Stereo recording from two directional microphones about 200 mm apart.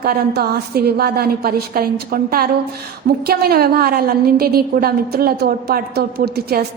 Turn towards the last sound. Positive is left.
turn(degrees=-50)  # may be behind; listen again after turning